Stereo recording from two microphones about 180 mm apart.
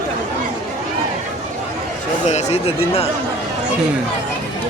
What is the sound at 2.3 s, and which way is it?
Speech, 35° left (ahead or behind).